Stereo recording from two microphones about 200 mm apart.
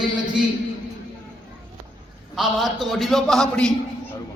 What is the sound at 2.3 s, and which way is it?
A man's voice, centre (ahead or behind).